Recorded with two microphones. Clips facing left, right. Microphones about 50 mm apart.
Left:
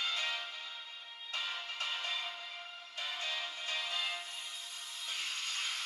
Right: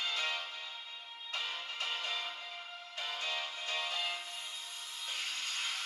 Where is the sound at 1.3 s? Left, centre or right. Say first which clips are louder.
Even; right.